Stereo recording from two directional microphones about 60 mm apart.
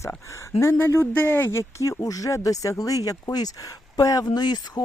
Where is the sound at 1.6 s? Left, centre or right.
Left.